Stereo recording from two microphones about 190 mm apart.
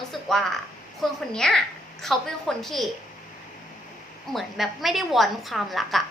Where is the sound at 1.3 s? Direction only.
5° left (ahead or behind).